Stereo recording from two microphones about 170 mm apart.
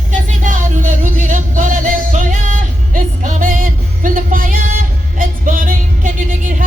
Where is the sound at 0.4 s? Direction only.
50° right (ahead or behind).